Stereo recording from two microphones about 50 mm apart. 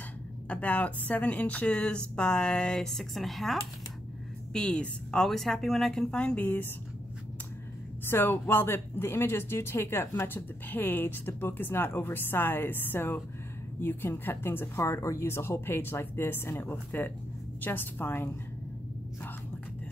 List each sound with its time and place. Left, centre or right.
0.5 s speech: left; by 3.5 s centre
4.5 s speech: centre
6.0 s speech: left
8.1 s speech: left
14.8 s a woman's voice: left